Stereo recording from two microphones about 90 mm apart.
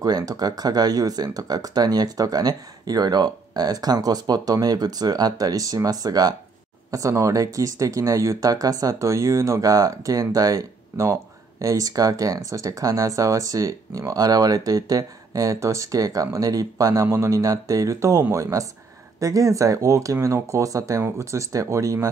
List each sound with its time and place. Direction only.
0.0 s speech: 45° right (ahead or behind)